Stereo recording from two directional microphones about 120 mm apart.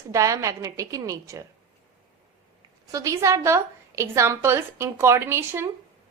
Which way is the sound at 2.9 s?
30° right (ahead or behind).